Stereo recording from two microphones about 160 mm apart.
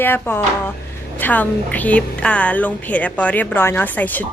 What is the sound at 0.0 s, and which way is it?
A woman's voice, 15° left (ahead or behind).